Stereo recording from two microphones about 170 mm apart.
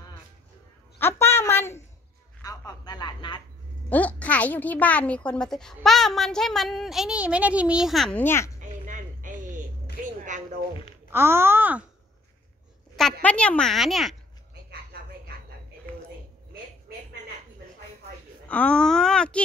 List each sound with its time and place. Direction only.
0.9 s a sound: 15° left (ahead or behind)
3.9 s a woman's voice: 10° left (ahead or behind)
8.2 s a woman's voice: 15° left (ahead or behind)
8.5 s music: 50° right (ahead or behind)
10.0 s a sound: 45° right (ahead or behind)
11.1 s speech: 15° right (ahead or behind)
13.2 s speech: 10° left (ahead or behind)
14.5 s a sound: 70° right (ahead or behind)
18.5 s speech: 5° left (ahead or behind)